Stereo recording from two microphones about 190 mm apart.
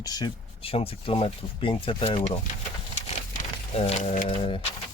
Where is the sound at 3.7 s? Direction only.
30° left (ahead or behind).